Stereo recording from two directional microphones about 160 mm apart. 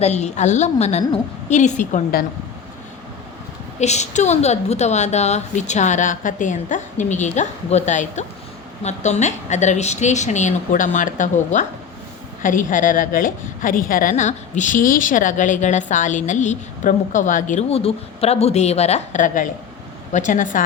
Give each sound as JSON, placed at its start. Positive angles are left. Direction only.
{"t": 0.0, "sound": "a woman's voice", "side_deg": 45}
{"t": 2.1, "sound": "speech", "side_deg": 70}
{"t": 3.8, "sound": "a woman's voice", "side_deg": 45}